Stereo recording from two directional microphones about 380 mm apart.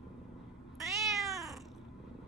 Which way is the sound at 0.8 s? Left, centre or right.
Centre.